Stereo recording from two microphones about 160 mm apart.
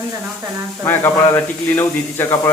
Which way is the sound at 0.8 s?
15° left (ahead or behind).